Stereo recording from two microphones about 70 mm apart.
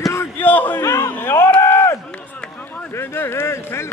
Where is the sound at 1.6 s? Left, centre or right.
Left.